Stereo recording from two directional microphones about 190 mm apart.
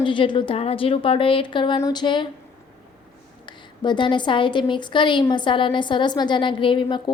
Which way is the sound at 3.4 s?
25° left (ahead or behind).